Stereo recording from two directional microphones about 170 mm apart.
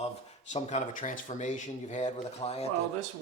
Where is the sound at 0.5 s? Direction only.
45° left (ahead or behind).